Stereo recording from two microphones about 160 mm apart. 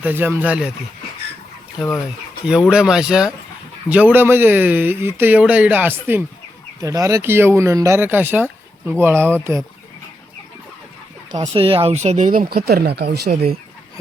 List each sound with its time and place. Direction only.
0.0 s speech: 10° right (ahead or behind)
2.5 s speech: 5° right (ahead or behind)
11.3 s speech: 40° right (ahead or behind); by 13.3 s 90° right